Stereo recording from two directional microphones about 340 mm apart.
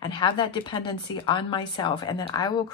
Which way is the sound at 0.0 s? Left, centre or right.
Centre.